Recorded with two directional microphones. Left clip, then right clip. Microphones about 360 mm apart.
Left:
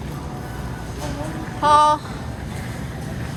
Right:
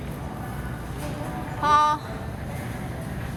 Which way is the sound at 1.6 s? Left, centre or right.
Centre.